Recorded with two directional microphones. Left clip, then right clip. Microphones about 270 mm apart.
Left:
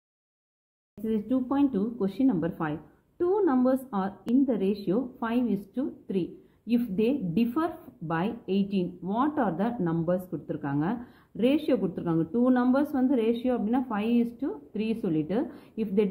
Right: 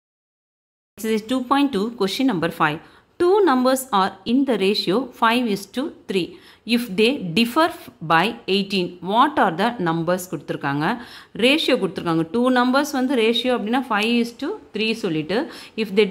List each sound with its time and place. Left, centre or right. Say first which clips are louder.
1.0 s speech: right 7 dB; right